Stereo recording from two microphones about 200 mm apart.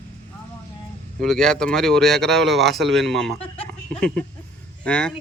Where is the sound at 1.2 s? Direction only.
5° left (ahead or behind).